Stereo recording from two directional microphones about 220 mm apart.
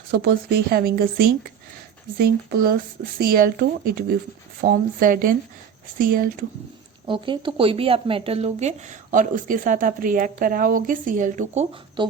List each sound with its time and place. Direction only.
0.1 s speech: 45° right (ahead or behind)
7.1 s speech: 20° right (ahead or behind)